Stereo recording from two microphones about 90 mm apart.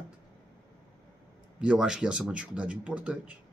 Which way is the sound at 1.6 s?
10° right (ahead or behind).